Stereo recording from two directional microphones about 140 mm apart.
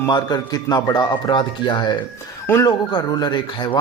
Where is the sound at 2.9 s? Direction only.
30° left (ahead or behind).